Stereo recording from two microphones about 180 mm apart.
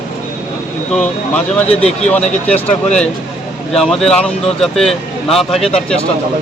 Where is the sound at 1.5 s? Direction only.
5° left (ahead or behind).